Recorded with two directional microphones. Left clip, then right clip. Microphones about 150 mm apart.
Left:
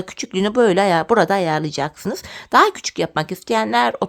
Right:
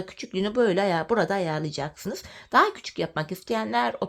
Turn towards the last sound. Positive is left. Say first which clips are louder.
# left 8 dB
turn(degrees=30)  # may be behind; listen again after turning